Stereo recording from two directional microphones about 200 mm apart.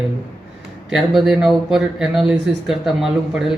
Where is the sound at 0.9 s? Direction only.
Centre (ahead or behind).